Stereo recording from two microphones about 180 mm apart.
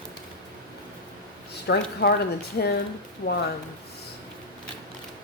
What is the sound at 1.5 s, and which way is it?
Speech, 65° left (ahead or behind).